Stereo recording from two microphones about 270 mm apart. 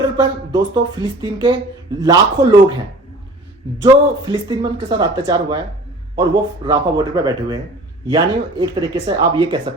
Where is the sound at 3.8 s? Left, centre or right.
Centre.